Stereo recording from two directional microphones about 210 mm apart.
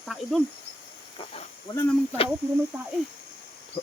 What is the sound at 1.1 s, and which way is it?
Speech, 30° left (ahead or behind).